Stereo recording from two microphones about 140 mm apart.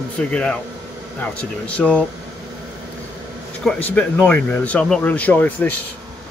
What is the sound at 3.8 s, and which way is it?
A man's voice, 10° left (ahead or behind).